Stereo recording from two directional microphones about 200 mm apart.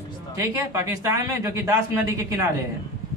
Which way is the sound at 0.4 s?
15° right (ahead or behind).